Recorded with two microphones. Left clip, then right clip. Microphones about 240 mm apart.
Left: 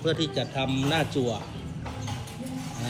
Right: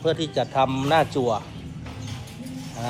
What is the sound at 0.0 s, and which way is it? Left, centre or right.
Speech, centre.